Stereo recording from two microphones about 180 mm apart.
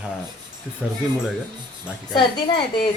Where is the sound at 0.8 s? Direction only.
5° right (ahead or behind).